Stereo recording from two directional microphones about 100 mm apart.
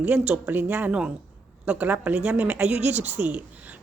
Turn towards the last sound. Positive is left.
turn(degrees=-15)  # may be behind; listen again after turning